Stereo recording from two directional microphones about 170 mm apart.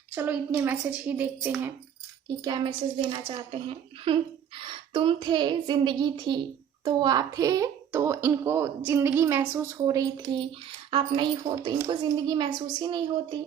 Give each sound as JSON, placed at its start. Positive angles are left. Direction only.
{"t": 0.1, "sound": "a woman's voice", "side_deg": -10}
{"t": 2.4, "sound": "a woman's voice", "side_deg": -25}